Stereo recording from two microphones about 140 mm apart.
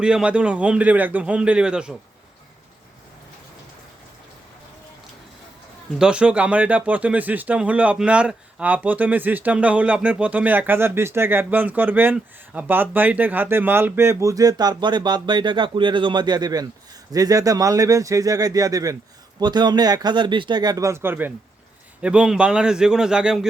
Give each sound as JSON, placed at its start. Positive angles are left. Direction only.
{"t": 0.0, "sound": "speech", "side_deg": -5}
{"t": 6.0, "sound": "a man's voice", "side_deg": -5}